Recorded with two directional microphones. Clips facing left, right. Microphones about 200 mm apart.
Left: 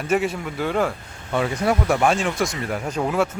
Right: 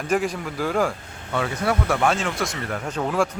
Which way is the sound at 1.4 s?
20° left (ahead or behind).